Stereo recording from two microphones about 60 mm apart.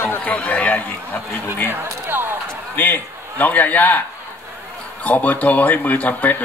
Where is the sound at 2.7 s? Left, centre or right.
Left.